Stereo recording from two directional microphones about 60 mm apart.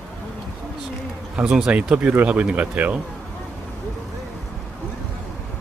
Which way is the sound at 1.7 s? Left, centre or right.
Right.